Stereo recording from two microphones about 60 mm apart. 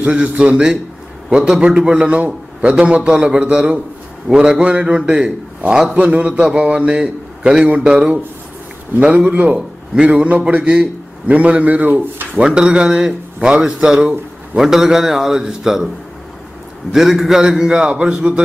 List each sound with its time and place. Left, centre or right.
0.0 s a man's voice: centre
9.1 s a man's voice: right
12.4 s speech: centre
16.9 s a man's voice: centre